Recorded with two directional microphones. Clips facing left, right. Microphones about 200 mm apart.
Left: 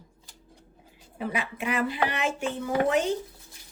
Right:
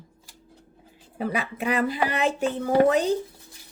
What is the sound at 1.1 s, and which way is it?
Speech, 40° right (ahead or behind).